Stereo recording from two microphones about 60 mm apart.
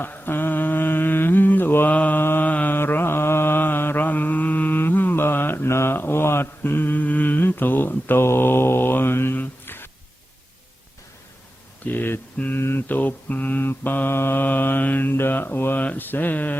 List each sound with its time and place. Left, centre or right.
0.0 s mantra: left
2.2 s mantra: left
2.5 s mantra: left
2.7 s mantra: left
11.9 s a sound: left
12.5 s mantra: left